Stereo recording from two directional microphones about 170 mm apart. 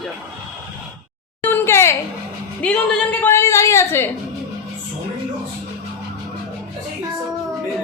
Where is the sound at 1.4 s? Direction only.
15° left (ahead or behind).